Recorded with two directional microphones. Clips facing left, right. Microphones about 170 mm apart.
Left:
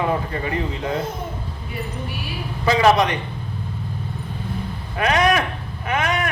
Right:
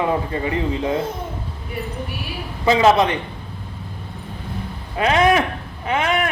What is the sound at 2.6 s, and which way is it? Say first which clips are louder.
Speech: right 2 dB; 25° right (ahead or behind).